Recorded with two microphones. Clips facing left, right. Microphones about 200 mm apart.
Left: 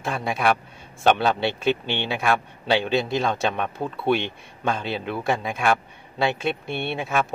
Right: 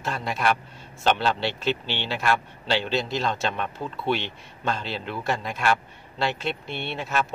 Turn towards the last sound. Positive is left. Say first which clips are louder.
# left 3 dB
turn(degrees=55)  # may be behind; listen again after turning